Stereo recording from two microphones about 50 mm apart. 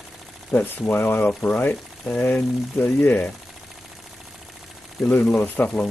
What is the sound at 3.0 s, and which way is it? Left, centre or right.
Speech, left.